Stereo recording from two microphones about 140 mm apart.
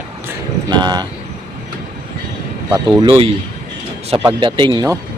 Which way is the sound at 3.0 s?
45° right (ahead or behind).